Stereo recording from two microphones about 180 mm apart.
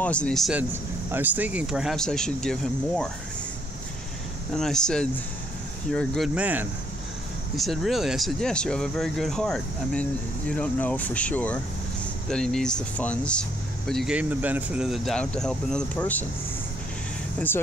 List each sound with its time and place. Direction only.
0.0 s speech: 5° left (ahead or behind)
1.1 s speech: 10° right (ahead or behind)
4.6 s speech: 5° left (ahead or behind)